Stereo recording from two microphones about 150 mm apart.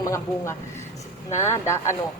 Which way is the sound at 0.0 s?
20° left (ahead or behind).